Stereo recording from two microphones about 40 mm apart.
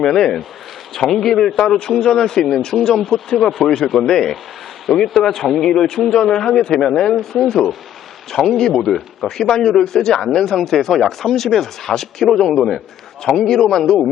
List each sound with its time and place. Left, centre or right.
0.0 s speech: centre
4.9 s speech: centre
5.2 s speech: centre